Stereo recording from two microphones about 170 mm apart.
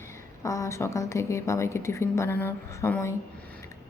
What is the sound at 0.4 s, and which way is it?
A woman's voice, 20° left (ahead or behind).